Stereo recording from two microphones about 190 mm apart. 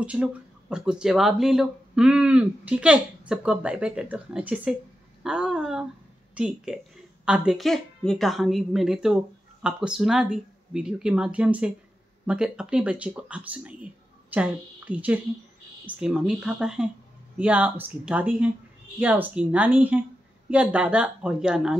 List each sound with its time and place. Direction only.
0.0 s a woman's voice: 5° right (ahead or behind)